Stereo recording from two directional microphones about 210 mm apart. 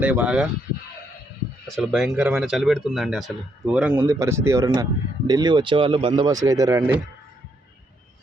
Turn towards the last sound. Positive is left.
turn(degrees=-15)  # may be behind; listen again after turning